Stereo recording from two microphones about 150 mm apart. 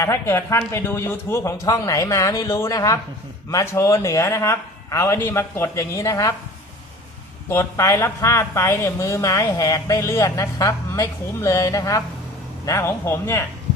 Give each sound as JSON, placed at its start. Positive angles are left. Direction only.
{"t": 0.0, "sound": "a woman's voice", "side_deg": 20}
{"t": 7.5, "sound": "a woman's voice", "side_deg": 20}